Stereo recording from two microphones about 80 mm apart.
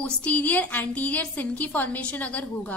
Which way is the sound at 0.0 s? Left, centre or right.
Centre.